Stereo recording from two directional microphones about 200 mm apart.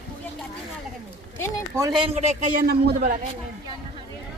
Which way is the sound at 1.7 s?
20° right (ahead or behind).